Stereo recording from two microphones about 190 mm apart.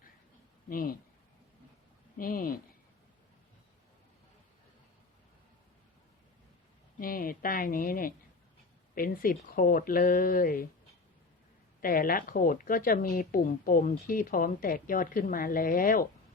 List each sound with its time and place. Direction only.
0.7 s speech: 50° left (ahead or behind)
2.1 s speech: 50° left (ahead or behind)
7.0 s speech: 50° left (ahead or behind)
11.8 s speech: 50° left (ahead or behind)